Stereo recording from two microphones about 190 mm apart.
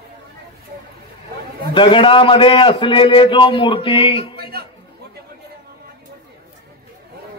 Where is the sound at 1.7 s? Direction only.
25° left (ahead or behind).